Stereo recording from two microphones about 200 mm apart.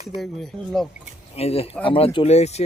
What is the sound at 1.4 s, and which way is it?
Speech, 30° left (ahead or behind).